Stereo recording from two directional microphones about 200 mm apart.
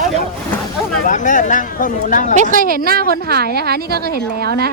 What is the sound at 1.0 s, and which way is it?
Speech, 40° left (ahead or behind).